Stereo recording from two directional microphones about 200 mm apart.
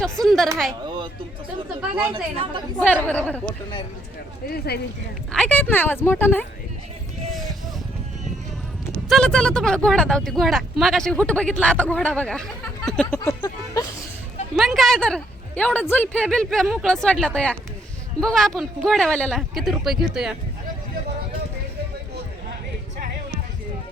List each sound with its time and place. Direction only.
0.0 s speech: centre (ahead or behind)
0.7 s a sound: 20° right (ahead or behind)
2.0 s speech: 10° right (ahead or behind)
2.3 s a woman's voice: 25° right (ahead or behind)
2.7 s a woman's voice: 10° left (ahead or behind)
4.4 s speech: 50° left (ahead or behind)
5.3 s a woman's voice: 5° left (ahead or behind)
9.0 s speech: centre (ahead or behind)
13.1 s music: 15° left (ahead or behind)
14.5 s speech: centre (ahead or behind)